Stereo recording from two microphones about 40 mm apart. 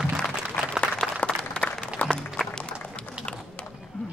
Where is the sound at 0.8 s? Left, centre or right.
Left.